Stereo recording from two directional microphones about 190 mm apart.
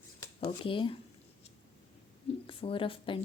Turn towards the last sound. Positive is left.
turn(degrees=30)  # may be behind; listen again after turning